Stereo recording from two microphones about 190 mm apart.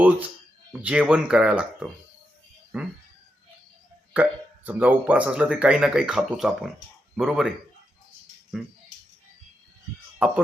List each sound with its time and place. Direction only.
0.7 s speech: 5° right (ahead or behind)
4.1 s speech: 5° right (ahead or behind)
8.6 s speech: centre (ahead or behind)
10.2 s speech: 5° right (ahead or behind)